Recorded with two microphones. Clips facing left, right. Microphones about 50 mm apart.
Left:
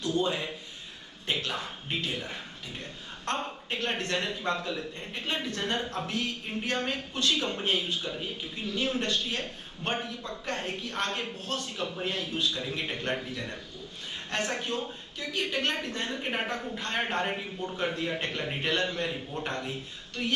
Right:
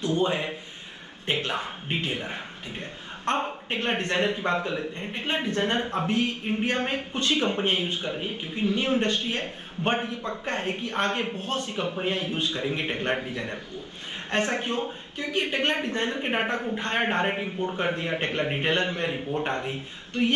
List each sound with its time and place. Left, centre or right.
0.0 s a man's voice: right